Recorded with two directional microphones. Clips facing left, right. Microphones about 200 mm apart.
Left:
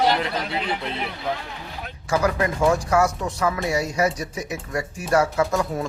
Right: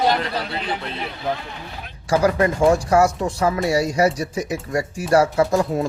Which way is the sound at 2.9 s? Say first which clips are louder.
Right 4 dB; 30° right (ahead or behind).